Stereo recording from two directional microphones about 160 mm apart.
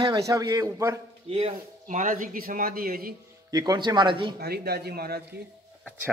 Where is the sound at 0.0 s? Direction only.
20° right (ahead or behind).